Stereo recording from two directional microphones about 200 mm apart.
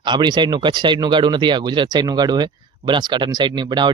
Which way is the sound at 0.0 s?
20° right (ahead or behind).